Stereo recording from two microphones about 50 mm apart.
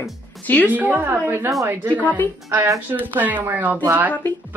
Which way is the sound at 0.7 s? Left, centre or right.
Right.